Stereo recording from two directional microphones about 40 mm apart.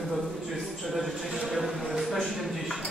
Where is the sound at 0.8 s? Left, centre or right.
Centre.